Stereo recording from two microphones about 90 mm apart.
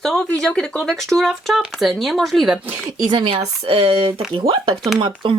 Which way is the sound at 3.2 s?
85° right.